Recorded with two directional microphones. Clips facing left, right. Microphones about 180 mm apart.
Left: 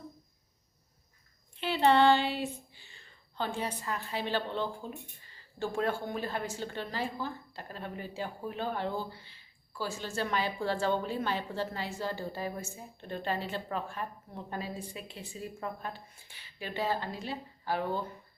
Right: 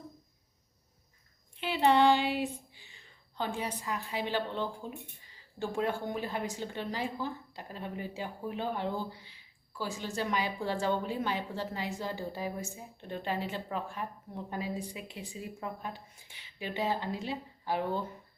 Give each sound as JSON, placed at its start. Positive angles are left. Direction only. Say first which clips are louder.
{"t": 1.6, "sound": "speech", "louder": "left 1 dB", "side_deg": -10}